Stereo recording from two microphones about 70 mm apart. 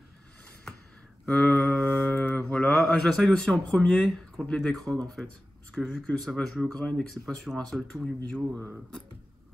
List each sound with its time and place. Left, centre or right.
1.2 s a sound: centre
2.3 s mantra: centre
3.0 s speech: centre